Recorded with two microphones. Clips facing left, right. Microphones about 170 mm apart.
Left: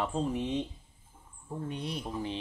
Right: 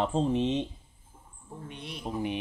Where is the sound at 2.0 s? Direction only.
15° right (ahead or behind).